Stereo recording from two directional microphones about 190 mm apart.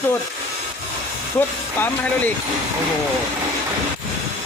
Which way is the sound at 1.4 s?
10° left (ahead or behind).